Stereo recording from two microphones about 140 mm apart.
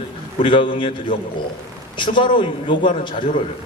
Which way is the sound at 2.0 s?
35° left (ahead or behind).